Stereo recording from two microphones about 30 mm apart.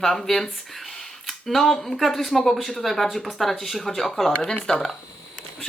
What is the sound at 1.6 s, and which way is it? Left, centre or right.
A woman's voice, centre.